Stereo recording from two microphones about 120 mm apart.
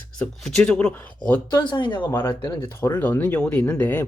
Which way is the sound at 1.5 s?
40° left (ahead or behind).